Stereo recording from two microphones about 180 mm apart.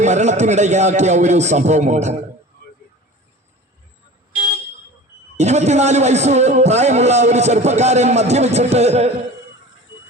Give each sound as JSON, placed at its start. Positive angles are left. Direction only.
{"t": 0.0, "sound": "a man's voice", "side_deg": -40}
{"t": 5.4, "sound": "a man's voice", "side_deg": -40}